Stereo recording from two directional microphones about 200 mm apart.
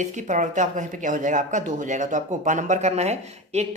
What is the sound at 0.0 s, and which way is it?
Speech, 40° right (ahead or behind).